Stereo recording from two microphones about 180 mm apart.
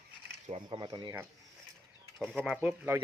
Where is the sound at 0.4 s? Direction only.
30° right (ahead or behind).